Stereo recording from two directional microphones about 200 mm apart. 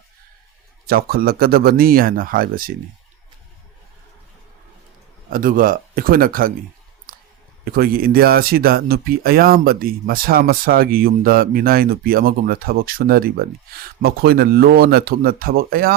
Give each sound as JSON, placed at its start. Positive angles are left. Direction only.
{"t": 0.9, "sound": "speech", "side_deg": -50}
{"t": 5.3, "sound": "speech", "side_deg": -45}
{"t": 7.1, "sound": "a sound", "side_deg": -45}
{"t": 7.6, "sound": "speech", "side_deg": -50}